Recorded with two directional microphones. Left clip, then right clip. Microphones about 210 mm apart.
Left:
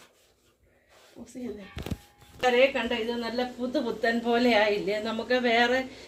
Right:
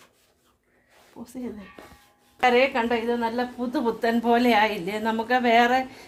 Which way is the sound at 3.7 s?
60° right (ahead or behind).